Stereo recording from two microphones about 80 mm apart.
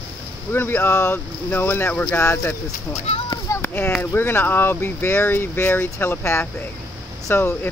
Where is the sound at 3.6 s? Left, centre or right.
Left.